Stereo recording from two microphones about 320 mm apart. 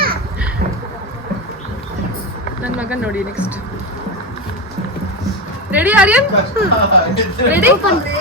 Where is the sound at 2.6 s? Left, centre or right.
Centre.